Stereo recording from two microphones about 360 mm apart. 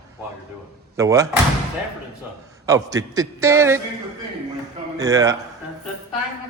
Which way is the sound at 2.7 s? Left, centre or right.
Centre.